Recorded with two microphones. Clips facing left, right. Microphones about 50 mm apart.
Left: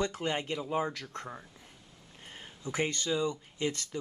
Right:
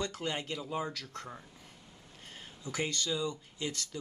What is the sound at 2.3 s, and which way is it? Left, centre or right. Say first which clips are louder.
Speech: left 3 dB; left.